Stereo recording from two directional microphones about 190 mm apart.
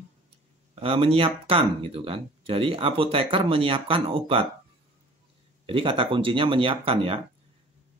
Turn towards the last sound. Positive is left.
turn(degrees=-30)  # may be behind; listen again after turning